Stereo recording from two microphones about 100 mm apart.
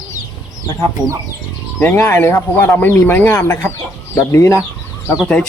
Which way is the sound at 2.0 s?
25° left (ahead or behind).